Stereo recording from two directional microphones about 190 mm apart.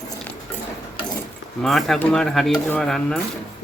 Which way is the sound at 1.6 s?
Centre (ahead or behind).